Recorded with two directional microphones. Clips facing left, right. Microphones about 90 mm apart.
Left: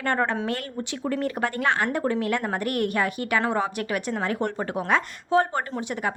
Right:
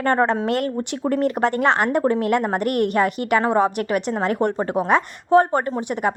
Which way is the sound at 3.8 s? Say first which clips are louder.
Right 5 dB; 45° right (ahead or behind).